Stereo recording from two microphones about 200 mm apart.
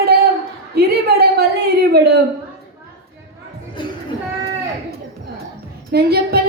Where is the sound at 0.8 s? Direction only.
55° right (ahead or behind).